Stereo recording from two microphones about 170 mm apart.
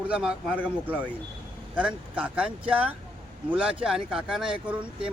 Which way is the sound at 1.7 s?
5° right (ahead or behind).